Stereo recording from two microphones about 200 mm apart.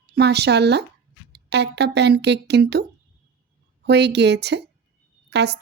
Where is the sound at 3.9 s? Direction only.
55° right (ahead or behind).